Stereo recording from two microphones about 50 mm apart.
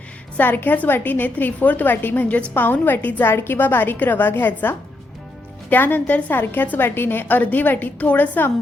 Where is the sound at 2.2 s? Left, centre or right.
Left.